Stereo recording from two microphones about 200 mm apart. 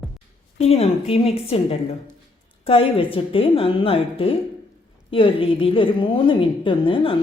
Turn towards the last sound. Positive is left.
turn(degrees=25)  # may be behind; listen again after turning